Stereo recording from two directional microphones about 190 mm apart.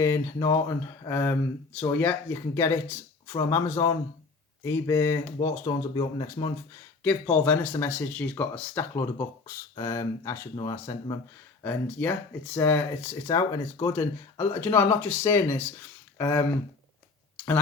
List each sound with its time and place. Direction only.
0.0 s speech: 15° left (ahead or behind)
7.0 s speech: 10° left (ahead or behind)
11.6 s speech: 10° left (ahead or behind)
17.3 s tick-tock: 10° left (ahead or behind)